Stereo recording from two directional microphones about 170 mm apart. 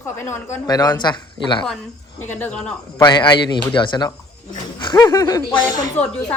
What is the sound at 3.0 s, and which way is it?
Speech, 25° left (ahead or behind).